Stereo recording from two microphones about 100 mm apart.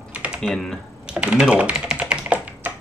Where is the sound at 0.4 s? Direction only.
5° left (ahead or behind).